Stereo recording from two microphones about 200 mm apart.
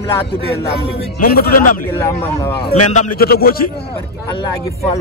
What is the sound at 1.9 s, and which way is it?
Speech, 10° left (ahead or behind).